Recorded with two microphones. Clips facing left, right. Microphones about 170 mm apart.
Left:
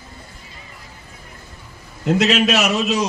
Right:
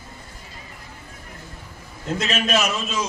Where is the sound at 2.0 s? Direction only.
70° left (ahead or behind).